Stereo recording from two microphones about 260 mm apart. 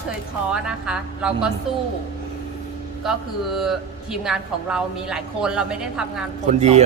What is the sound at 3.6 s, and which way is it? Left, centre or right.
Speech, centre.